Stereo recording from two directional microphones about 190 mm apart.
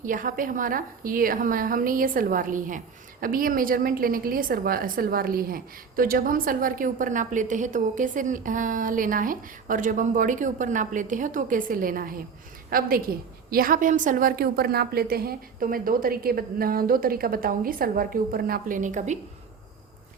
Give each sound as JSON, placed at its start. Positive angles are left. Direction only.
{"t": 0.0, "sound": "a woman's voice", "side_deg": -45}